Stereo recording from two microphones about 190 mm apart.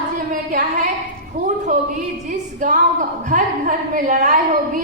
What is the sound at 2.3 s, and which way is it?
A woman's voice, 45° right (ahead or behind).